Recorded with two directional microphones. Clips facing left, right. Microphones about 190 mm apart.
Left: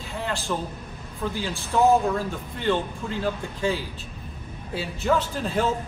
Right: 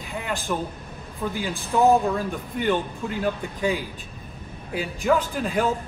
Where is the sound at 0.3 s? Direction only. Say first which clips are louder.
Right 2 dB; 15° right (ahead or behind).